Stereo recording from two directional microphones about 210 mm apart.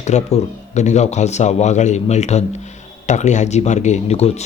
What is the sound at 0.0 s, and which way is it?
Speech, 35° left (ahead or behind).